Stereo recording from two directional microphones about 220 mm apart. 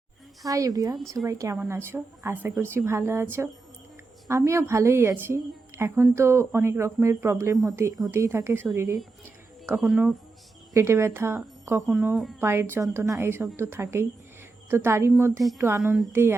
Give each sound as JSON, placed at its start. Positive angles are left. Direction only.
{"t": 0.4, "sound": "a woman's voice", "side_deg": -15}
{"t": 9.8, "sound": "speech", "side_deg": 0}
{"t": 10.8, "sound": "a woman's voice", "side_deg": -10}
{"t": 12.4, "sound": "a woman's voice", "side_deg": -10}